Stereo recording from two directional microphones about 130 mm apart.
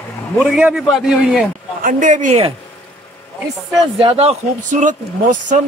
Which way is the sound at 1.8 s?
70° right (ahead or behind).